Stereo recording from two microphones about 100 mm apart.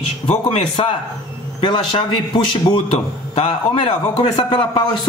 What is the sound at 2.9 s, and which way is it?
A man's voice, 70° left (ahead or behind).